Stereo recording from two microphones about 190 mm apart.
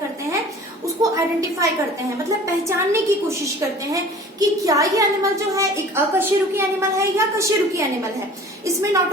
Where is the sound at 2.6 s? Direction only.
15° right (ahead or behind).